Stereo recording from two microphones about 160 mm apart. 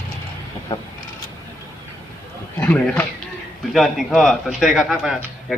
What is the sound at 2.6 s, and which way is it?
A man's voice, 10° left (ahead or behind).